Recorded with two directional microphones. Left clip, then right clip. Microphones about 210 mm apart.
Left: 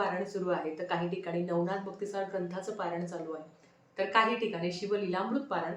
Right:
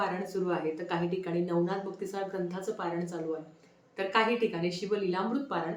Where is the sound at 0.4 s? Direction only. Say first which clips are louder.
Right 1 dB; 5° right (ahead or behind).